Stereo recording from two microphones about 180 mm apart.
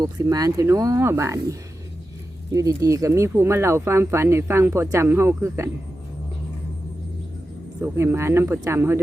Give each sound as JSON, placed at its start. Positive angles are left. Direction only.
{"t": 0.0, "sound": "speech", "side_deg": -20}
{"t": 7.8, "sound": "speech", "side_deg": -15}